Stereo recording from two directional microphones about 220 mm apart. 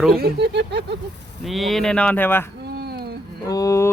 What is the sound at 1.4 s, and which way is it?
Speech, centre (ahead or behind).